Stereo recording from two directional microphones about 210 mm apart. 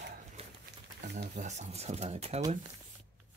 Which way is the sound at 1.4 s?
35° right (ahead or behind).